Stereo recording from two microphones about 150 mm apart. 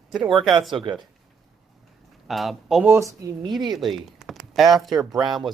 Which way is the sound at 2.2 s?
Centre (ahead or behind).